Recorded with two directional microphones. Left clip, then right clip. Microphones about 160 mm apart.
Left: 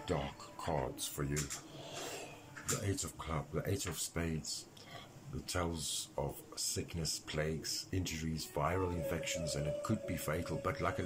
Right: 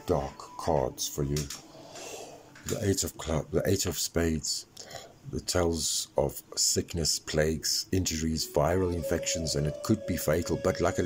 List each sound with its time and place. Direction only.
0.0 s speech: 45° right (ahead or behind)
2.8 s speech: 70° right (ahead or behind)